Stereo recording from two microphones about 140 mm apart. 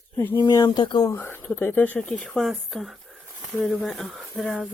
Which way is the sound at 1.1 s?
15° left (ahead or behind).